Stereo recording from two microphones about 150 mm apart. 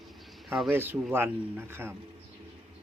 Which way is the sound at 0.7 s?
15° right (ahead or behind).